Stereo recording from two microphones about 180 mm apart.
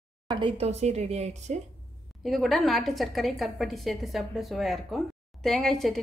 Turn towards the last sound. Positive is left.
turn(degrees=0)  # may be behind; listen again after turning